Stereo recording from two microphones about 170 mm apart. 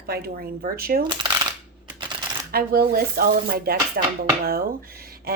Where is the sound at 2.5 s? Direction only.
60° right (ahead or behind).